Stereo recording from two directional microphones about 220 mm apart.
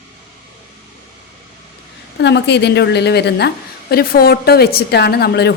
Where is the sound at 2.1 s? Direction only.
50° left (ahead or behind).